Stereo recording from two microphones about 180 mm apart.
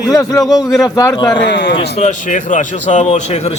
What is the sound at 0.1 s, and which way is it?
Speech, 20° left (ahead or behind).